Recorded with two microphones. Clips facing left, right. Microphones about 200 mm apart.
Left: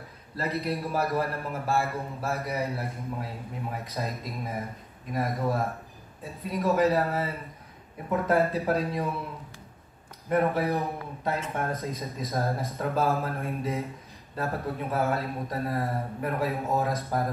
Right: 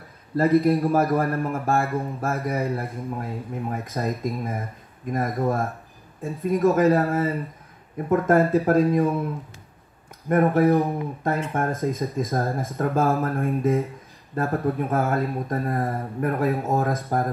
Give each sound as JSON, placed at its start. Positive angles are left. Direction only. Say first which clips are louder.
{"t": 0.4, "sound": "speech", "louder": "right 12 dB", "side_deg": -50}